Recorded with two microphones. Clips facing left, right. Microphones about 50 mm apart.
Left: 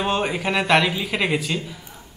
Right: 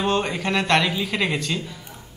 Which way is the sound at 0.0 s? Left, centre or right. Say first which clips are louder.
Even; centre.